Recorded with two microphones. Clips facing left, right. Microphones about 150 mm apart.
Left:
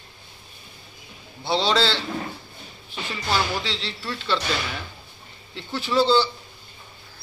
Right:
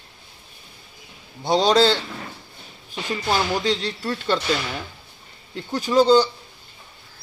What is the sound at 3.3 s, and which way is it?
Speech, 45° right (ahead or behind).